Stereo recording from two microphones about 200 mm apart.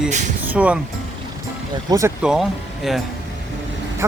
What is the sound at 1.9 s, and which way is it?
Speech, 15° right (ahead or behind).